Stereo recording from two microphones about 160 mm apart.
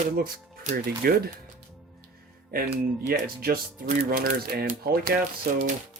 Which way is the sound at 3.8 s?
60° right (ahead or behind).